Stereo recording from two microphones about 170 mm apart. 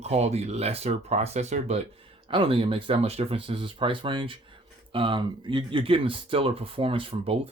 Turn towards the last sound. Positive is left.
turn(degrees=-35)  # may be behind; listen again after turning